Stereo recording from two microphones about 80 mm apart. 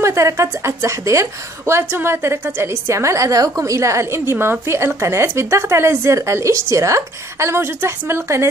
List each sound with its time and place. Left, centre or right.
0.0 s a woman's voice: right